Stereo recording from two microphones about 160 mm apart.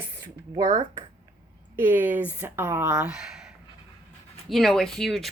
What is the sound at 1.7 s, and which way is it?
Speech, 10° right (ahead or behind).